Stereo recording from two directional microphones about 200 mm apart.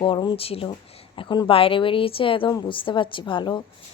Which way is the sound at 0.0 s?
25° left (ahead or behind).